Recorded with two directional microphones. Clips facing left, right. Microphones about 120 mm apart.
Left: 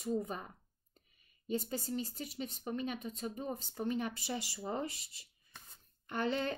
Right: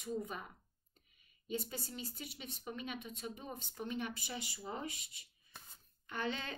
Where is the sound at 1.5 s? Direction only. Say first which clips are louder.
Left 5 dB; 40° left (ahead or behind).